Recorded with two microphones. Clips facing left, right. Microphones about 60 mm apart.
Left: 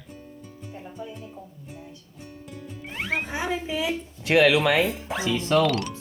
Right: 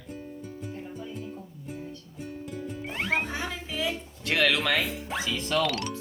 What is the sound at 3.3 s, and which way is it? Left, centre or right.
Speech, centre.